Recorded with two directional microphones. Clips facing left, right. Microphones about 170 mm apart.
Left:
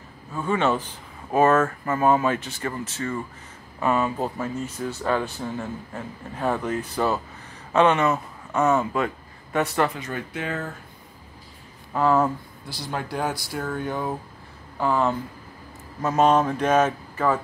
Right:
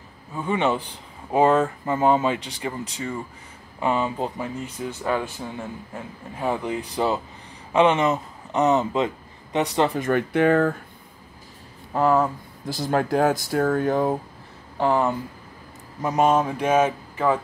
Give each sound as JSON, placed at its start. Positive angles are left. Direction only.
{"t": 0.3, "sound": "a man's voice", "side_deg": -15}
{"t": 9.9, "sound": "speech", "side_deg": -55}
{"t": 12.7, "sound": "speech", "side_deg": -45}
{"t": 14.8, "sound": "speech", "side_deg": -20}